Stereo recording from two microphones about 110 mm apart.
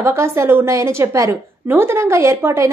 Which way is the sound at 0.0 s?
25° right (ahead or behind).